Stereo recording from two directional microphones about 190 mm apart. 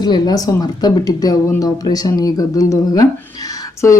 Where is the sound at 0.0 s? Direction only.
20° left (ahead or behind).